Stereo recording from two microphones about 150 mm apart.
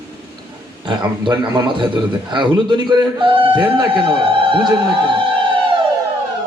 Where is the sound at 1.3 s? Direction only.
30° right (ahead or behind).